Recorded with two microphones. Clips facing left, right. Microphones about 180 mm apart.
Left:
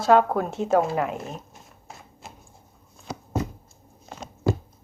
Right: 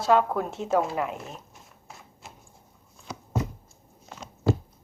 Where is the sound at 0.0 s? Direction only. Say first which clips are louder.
Left 3 dB; 45° left (ahead or behind).